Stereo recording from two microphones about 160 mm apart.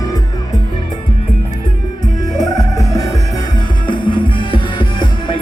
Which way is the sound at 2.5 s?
20° left (ahead or behind).